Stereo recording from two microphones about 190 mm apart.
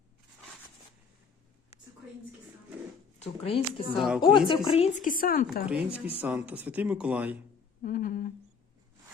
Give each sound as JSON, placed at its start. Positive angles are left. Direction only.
{"t": 3.2, "sound": "speech", "side_deg": 30}
{"t": 3.9, "sound": "speech", "side_deg": 0}
{"t": 4.4, "sound": "speech", "side_deg": 25}
{"t": 5.0, "sound": "speech", "side_deg": 50}
{"t": 5.6, "sound": "speech", "side_deg": -5}
{"t": 7.8, "sound": "a sound", "side_deg": 45}